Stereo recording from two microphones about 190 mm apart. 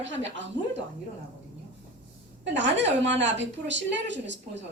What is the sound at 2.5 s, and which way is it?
A woman's voice, 70° right (ahead or behind).